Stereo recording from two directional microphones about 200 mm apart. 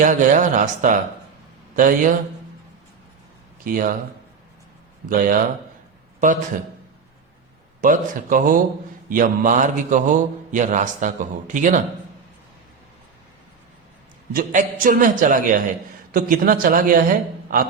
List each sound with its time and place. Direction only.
0.0 s a man's voice: 40° right (ahead or behind)
3.6 s a woman's voice: 45° right (ahead or behind)
5.0 s a woman's voice: 45° right (ahead or behind)
7.8 s a woman's voice: 40° right (ahead or behind)
14.3 s a woman's voice: 45° right (ahead or behind)